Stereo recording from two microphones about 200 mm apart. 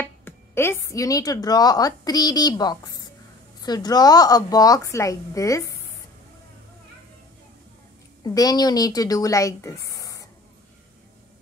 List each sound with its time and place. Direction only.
0.0 s a woman's voice: 10° left (ahead or behind)
8.2 s speech: 20° left (ahead or behind)